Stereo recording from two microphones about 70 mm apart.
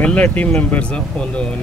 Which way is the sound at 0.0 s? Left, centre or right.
Centre.